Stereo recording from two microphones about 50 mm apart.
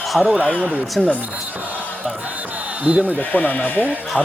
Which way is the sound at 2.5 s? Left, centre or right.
Right.